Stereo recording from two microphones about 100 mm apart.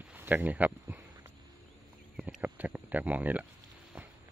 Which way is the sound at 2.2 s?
15° right (ahead or behind).